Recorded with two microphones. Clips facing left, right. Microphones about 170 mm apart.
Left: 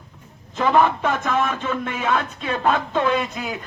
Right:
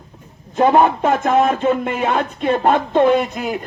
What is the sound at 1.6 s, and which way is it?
A man's voice, 55° right (ahead or behind).